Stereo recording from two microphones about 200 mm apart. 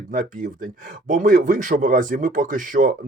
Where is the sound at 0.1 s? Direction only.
40° right (ahead or behind).